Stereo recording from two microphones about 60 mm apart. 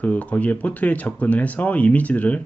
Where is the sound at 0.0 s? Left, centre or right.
Left.